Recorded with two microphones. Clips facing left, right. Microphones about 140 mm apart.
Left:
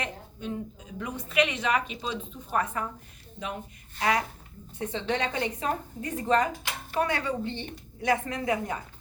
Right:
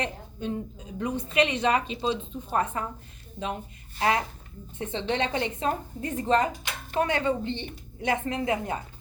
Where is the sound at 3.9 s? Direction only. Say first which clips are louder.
Right 1 dB; 30° right (ahead or behind).